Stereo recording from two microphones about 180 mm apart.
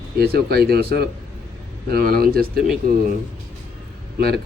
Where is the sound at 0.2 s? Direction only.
60° right (ahead or behind).